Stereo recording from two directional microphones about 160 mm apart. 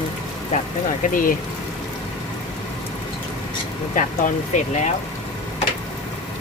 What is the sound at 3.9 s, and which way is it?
Speech, 50° left (ahead or behind).